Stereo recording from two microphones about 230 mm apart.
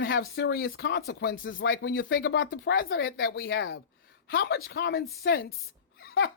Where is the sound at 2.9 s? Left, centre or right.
Left.